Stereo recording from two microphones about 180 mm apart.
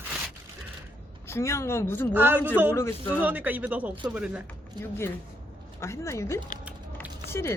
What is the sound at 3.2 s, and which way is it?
Speech, 10° right (ahead or behind).